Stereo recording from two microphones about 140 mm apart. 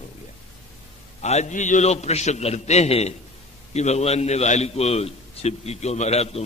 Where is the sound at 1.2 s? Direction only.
55° left (ahead or behind).